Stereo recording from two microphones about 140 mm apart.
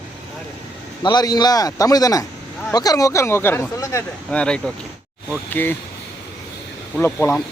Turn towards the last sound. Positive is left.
turn(degrees=15)  # may be behind; listen again after turning